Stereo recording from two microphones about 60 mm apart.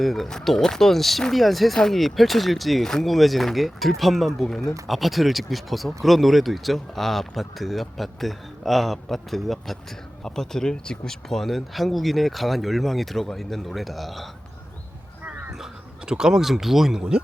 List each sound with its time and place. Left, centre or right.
0.0 s speech: centre
15.5 s speech: centre